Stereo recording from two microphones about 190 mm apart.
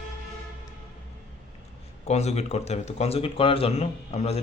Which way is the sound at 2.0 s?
35° left (ahead or behind).